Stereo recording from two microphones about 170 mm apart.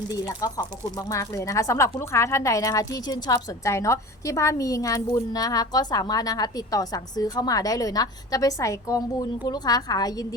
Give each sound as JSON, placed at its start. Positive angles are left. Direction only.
{"t": 0.1, "sound": "a woman's voice", "side_deg": 20}